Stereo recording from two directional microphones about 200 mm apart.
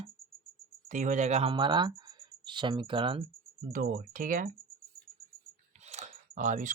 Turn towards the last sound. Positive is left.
turn(degrees=-40)  # may be behind; listen again after turning